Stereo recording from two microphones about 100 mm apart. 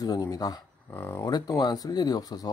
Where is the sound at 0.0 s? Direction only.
40° left (ahead or behind).